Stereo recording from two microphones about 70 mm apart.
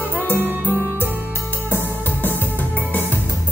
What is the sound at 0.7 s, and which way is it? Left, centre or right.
Music, left.